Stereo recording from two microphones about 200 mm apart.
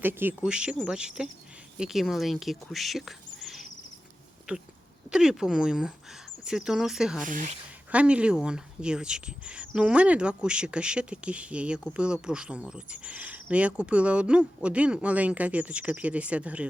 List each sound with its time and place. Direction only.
0.0 s speech: 10° right (ahead or behind)
7.3 s speech: 40° right (ahead or behind)
7.9 s speech: 5° right (ahead or behind)